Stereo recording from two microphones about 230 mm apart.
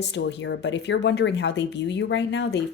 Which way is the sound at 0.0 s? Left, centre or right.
Left.